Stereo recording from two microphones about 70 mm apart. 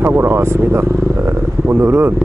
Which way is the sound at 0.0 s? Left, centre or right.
Right.